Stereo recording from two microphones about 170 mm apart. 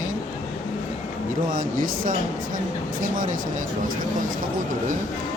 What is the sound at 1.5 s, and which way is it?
Speech, 55° right (ahead or behind).